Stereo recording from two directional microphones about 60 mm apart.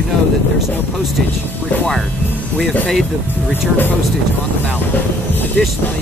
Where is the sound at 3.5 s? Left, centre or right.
Left.